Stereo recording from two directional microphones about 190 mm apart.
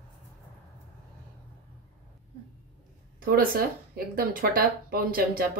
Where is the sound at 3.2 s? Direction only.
50° right (ahead or behind).